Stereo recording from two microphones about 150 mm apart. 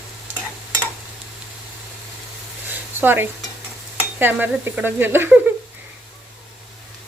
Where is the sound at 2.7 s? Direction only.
15° right (ahead or behind).